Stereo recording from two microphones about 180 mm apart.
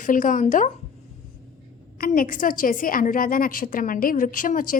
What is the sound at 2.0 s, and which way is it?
A woman's voice, 50° left (ahead or behind).